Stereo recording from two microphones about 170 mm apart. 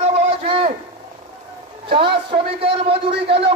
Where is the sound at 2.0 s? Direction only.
30° right (ahead or behind).